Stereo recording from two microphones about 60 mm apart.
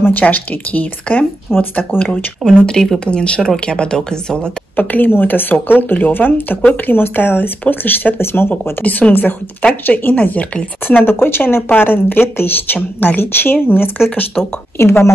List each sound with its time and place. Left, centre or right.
0.0 s speech: left
2.4 s speech: centre
4.7 s speech: left
8.8 s speech: left
11.1 s speech: left